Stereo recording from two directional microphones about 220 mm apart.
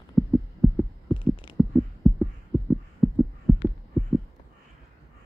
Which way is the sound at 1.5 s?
Centre (ahead or behind).